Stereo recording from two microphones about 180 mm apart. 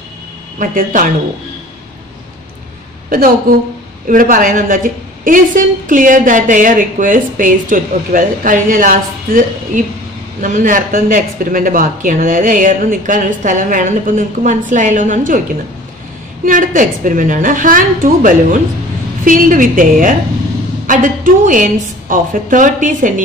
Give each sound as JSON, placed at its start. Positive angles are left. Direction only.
{"t": 0.6, "sound": "a woman's voice", "side_deg": -50}
{"t": 3.1, "sound": "a woman's voice", "side_deg": -50}
{"t": 16.4, "sound": "a woman's voice", "side_deg": -45}